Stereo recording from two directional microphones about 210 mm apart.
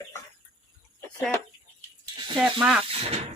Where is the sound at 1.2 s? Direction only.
10° left (ahead or behind).